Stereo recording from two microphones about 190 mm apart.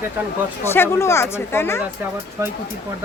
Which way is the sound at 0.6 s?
10° left (ahead or behind).